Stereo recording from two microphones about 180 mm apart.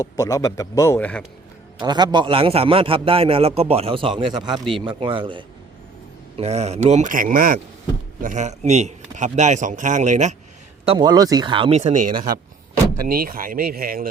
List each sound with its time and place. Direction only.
0.2 s a man's voice: 20° left (ahead or behind)
1.8 s a man's voice: 25° right (ahead or behind)
6.3 s speech: 40° right (ahead or behind)
10.8 s a man's voice: 25° right (ahead or behind)
11.8 s speech: 45° right (ahead or behind)